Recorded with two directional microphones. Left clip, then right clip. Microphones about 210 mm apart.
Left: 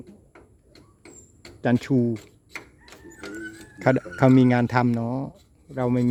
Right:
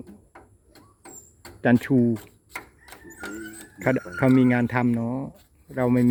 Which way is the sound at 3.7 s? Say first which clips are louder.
Left 2 dB; 20° left (ahead or behind).